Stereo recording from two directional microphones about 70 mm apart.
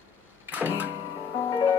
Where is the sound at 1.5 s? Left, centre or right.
Left.